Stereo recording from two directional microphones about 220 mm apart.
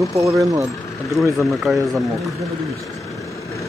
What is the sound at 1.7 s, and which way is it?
Speech, centre (ahead or behind).